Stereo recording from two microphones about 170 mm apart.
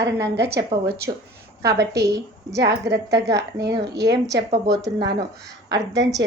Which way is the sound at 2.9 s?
75° right (ahead or behind).